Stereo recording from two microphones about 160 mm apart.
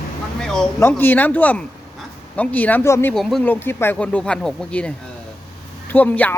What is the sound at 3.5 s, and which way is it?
Speech, 15° left (ahead or behind).